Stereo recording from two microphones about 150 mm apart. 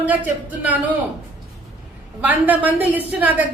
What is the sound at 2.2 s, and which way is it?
Speech, 10° right (ahead or behind).